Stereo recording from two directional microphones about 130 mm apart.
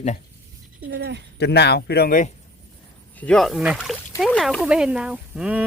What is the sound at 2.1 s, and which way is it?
Speech, 90° left.